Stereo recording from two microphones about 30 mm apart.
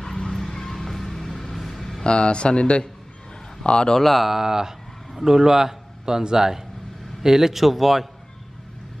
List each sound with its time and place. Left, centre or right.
0.7 s vehicle: centre
2.0 s speech: left
4.0 s a man's voice: centre
4.3 s a man's voice: centre
7.6 s a man's voice: centre